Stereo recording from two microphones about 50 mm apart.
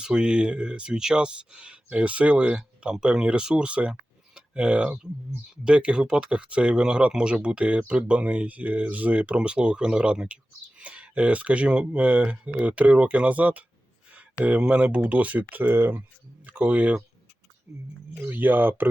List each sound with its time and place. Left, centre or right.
0.0 s speech: centre
14.1 s a sound: right
14.6 s speech: right
15.7 s speech: right
16.5 s speech: right
18.1 s speech: right